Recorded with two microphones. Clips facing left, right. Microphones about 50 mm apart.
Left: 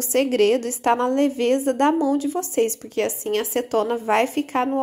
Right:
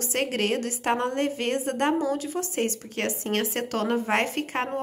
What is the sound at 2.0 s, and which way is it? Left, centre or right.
A woman's voice, right.